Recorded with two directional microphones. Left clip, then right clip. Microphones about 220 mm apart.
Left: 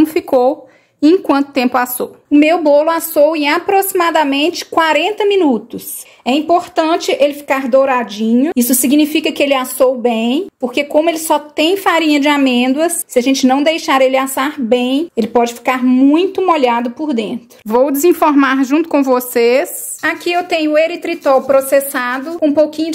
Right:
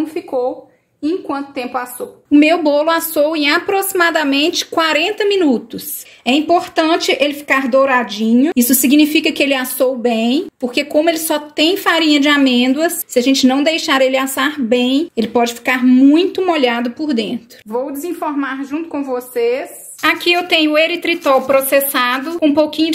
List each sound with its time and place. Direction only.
0.0 s a woman's voice: 45° left (ahead or behind)
2.3 s a woman's voice: 5° left (ahead or behind)
17.6 s a woman's voice: 45° left (ahead or behind)
20.0 s speech: 5° left (ahead or behind)